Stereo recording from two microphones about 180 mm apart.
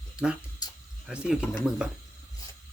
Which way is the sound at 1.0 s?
5° right (ahead or behind).